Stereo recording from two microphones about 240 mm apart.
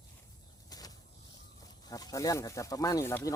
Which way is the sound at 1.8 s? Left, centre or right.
Centre.